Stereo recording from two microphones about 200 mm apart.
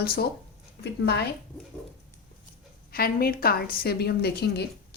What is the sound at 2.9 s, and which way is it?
A woman's voice, 50° left (ahead or behind).